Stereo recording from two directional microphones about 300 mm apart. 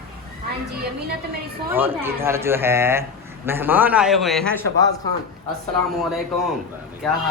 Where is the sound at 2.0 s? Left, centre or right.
Centre.